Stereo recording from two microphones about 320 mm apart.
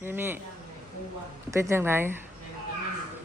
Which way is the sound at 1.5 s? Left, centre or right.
Centre.